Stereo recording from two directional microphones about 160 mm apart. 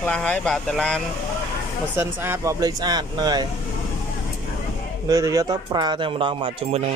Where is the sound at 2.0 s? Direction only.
15° right (ahead or behind).